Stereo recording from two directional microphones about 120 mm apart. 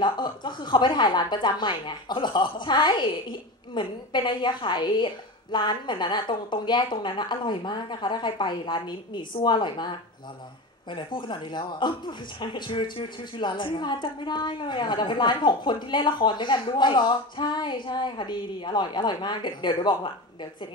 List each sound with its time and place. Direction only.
0.0 s a woman's voice: 40° left (ahead or behind)